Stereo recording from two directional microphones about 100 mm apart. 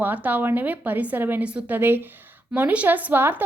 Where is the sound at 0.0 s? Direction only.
20° right (ahead or behind).